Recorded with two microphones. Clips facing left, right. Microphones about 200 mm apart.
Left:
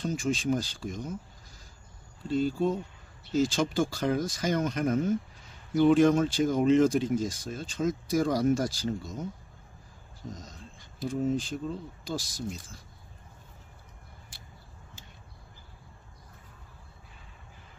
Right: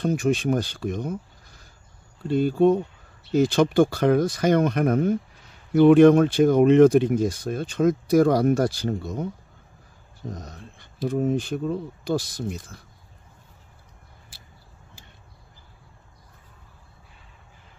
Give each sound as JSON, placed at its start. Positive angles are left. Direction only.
{"t": 0.0, "sound": "speech", "side_deg": -60}
{"t": 2.2, "sound": "speech", "side_deg": -60}
{"t": 10.2, "sound": "a sound", "side_deg": -60}
{"t": 11.1, "sound": "speech", "side_deg": -60}